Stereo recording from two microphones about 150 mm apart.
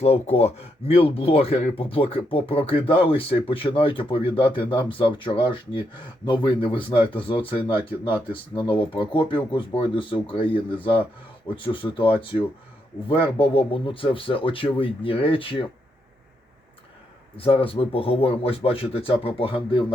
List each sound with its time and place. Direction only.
0.0 s speech: 45° left (ahead or behind)
17.3 s speech: 40° left (ahead or behind)